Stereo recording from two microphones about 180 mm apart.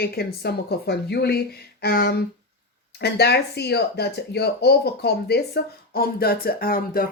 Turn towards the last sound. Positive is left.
turn(degrees=55)  # may be behind; listen again after turning